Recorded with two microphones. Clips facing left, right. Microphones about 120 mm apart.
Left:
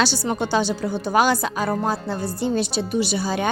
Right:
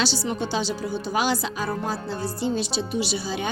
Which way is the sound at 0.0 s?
55° left (ahead or behind).